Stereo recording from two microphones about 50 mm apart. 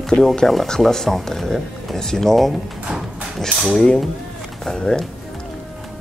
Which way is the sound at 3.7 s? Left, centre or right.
Centre.